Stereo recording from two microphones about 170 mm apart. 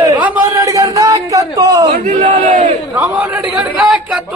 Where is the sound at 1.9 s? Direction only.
50° right (ahead or behind).